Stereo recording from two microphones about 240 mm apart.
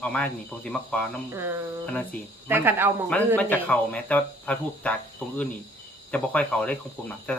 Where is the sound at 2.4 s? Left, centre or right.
Centre.